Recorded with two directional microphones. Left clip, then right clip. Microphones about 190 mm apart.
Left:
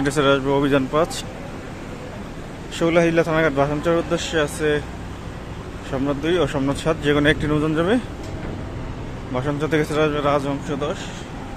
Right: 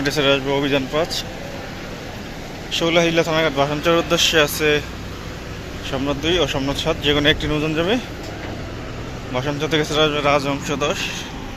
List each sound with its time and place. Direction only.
0.0 s speech: 25° left (ahead or behind)
2.7 s speech: 25° left (ahead or behind)
3.8 s speech: 10° left (ahead or behind)
5.9 s speech: 15° left (ahead or behind)
9.3 s speech: 20° left (ahead or behind)